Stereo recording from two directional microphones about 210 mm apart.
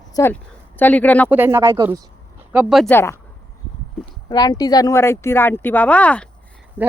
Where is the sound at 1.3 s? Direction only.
10° right (ahead or behind); by 3.1 s 10° left (ahead or behind).